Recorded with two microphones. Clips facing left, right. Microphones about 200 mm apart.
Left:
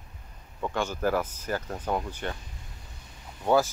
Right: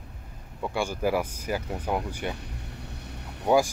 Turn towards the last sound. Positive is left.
turn(degrees=-15)  # may be behind; listen again after turning